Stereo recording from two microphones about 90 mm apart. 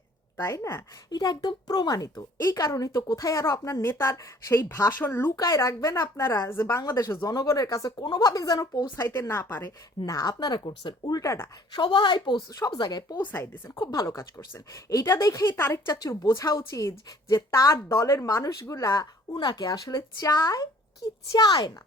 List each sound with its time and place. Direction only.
0.3 s speech: 35° left (ahead or behind)
1.2 s a woman's voice: 45° left (ahead or behind)
2.4 s speech: 30° left (ahead or behind)
4.9 s a woman's voice: 20° left (ahead or behind)
5.4 s speech: 35° left (ahead or behind)
7.9 s a woman's voice: 60° left (ahead or behind)
9.2 s a woman's voice: 25° left (ahead or behind)
10.1 s a woman's voice: 40° left (ahead or behind)
13.1 s a woman's voice: 25° left (ahead or behind)
13.7 s a woman's voice: 45° left (ahead or behind)
14.7 s speech: 35° left (ahead or behind)
19.3 s a woman's voice: 55° left (ahead or behind)